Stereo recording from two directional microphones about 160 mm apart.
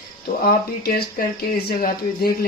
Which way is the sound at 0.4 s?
70° left (ahead or behind).